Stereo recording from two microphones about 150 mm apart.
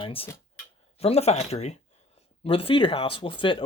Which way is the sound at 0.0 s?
40° left (ahead or behind).